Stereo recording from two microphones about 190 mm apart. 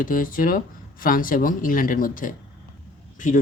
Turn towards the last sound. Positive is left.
turn(degrees=40)  # may be behind; listen again after turning